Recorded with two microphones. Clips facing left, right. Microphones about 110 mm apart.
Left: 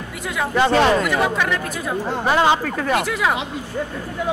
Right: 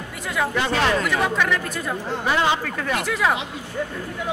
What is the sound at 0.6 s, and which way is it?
Speech, 30° left (ahead or behind).